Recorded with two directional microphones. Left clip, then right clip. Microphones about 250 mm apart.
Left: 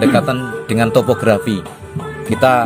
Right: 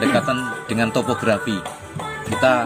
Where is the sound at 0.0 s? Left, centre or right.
Left.